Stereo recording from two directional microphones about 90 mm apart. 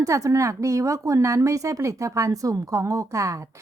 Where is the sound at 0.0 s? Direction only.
35° right (ahead or behind).